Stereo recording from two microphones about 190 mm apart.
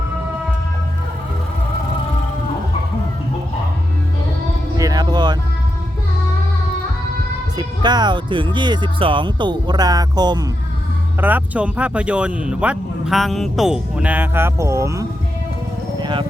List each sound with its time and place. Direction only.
4.8 s music: 20° right (ahead or behind)
7.5 s speech: 20° right (ahead or behind)
11.2 s speech: 10° right (ahead or behind)
16.0 s music: 25° right (ahead or behind)